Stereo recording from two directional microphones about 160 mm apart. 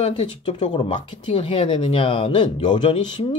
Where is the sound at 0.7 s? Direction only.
30° left (ahead or behind).